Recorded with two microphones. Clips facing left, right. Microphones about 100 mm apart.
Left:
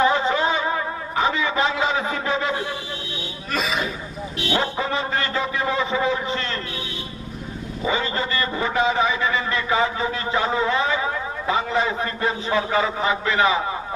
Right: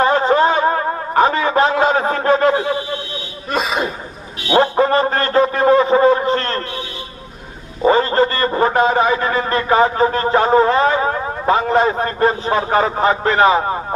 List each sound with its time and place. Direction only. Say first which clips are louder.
0.0 s a sound: right 6 dB; 50° right (ahead or behind)
2.5 s speech: right 9 dB; 70° right (ahead or behind)
3.5 s throat clearing: right 6 dB; 40° right (ahead or behind)
4.5 s a man's voice: right 11 dB; 50° right (ahead or behind)
7.8 s a man's voice: right 11 dB; 50° right (ahead or behind)